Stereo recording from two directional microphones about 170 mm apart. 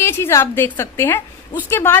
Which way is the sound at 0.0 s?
15° left (ahead or behind).